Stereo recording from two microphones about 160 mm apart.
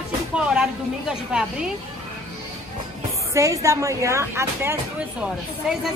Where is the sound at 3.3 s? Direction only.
20° right (ahead or behind).